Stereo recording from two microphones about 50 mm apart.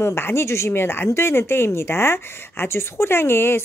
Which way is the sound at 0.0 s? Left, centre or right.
Left.